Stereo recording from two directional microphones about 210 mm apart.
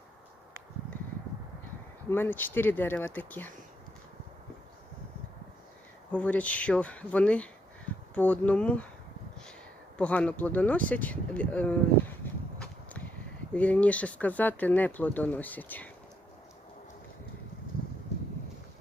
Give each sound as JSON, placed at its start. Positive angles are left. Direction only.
{"t": 2.0, "sound": "speech", "side_deg": 10}
{"t": 6.1, "sound": "speech", "side_deg": 5}
{"t": 10.0, "sound": "speech", "side_deg": 5}
{"t": 12.2, "sound": "walk", "side_deg": 5}
{"t": 13.5, "sound": "speech", "side_deg": 5}